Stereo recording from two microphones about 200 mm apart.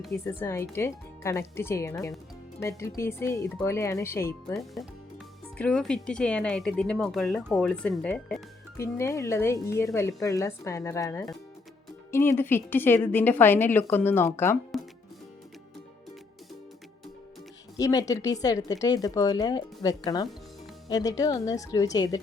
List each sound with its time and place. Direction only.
0.3 s speech: 10° left (ahead or behind)
4.5 s speech: centre (ahead or behind)
17.7 s a woman's voice: 15° left (ahead or behind)